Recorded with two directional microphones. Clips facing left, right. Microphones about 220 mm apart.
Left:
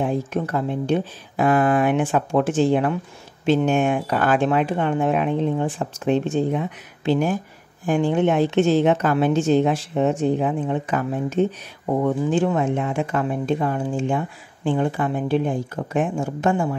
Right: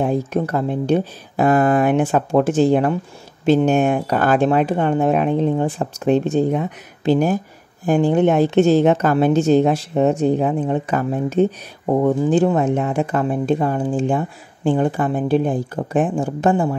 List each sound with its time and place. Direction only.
0.0 s a woman's voice: 40° right (ahead or behind)